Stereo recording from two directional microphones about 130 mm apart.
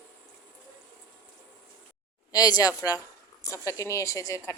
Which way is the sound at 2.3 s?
30° left (ahead or behind).